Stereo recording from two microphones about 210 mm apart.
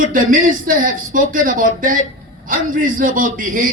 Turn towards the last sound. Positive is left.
turn(degrees=-40)  # may be behind; listen again after turning